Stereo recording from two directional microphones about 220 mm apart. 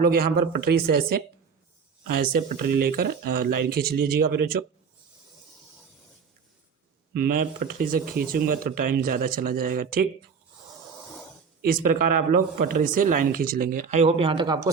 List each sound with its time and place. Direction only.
0.0 s speech: 45° right (ahead or behind)
2.0 s speech: 40° right (ahead or behind)
7.1 s speech: 45° right (ahead or behind)
11.6 s speech: 40° right (ahead or behind); by 14.7 s 20° right (ahead or behind)